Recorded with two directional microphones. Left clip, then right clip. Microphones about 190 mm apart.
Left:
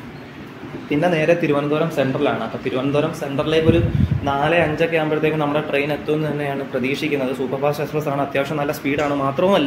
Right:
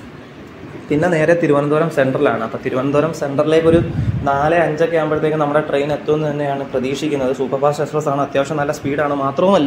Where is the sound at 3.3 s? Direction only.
25° right (ahead or behind).